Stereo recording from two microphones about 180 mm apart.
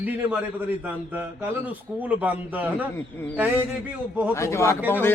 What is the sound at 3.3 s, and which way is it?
Speech, 10° right (ahead or behind).